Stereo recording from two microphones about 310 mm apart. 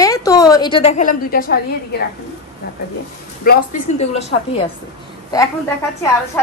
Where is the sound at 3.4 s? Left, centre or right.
Left.